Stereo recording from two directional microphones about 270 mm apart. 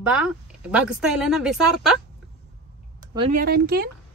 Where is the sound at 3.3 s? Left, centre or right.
Right.